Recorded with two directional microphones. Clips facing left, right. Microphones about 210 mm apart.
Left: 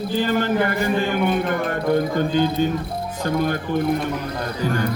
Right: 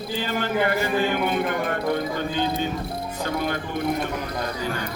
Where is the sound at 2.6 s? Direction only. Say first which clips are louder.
Left 6 dB; 45° left (ahead or behind).